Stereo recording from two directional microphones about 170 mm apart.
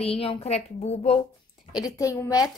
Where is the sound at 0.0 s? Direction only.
35° left (ahead or behind).